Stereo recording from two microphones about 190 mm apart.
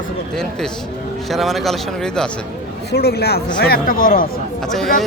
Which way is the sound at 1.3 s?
Centre (ahead or behind).